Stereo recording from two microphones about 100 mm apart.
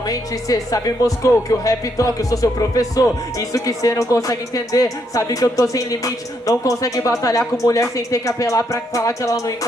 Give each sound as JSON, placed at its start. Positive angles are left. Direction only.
{"t": 0.0, "sound": "speech", "side_deg": 35}